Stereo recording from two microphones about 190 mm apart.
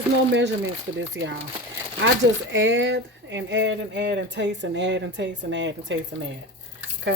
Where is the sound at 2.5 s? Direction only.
70° right (ahead or behind).